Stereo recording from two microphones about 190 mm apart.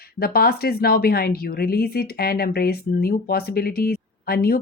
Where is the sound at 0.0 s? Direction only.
55° left (ahead or behind).